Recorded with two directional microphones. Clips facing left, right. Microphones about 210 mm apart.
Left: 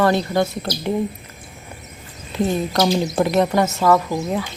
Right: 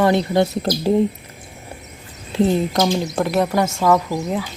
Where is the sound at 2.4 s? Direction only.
20° right (ahead or behind).